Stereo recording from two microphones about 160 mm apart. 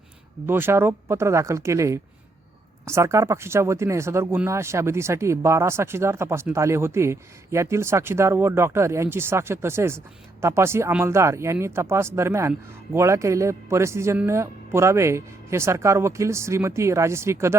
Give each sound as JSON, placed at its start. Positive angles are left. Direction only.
{"t": 0.4, "sound": "speech", "side_deg": -15}